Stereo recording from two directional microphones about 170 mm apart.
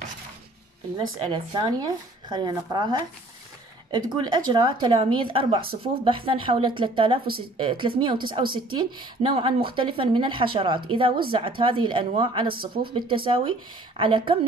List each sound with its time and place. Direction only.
0.9 s a woman's voice: 25° right (ahead or behind)
12.5 s speech: 60° right (ahead or behind)
13.1 s a woman's voice: 30° right (ahead or behind)